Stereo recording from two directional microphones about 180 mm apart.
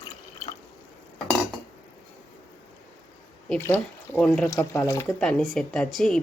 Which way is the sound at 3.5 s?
10° left (ahead or behind).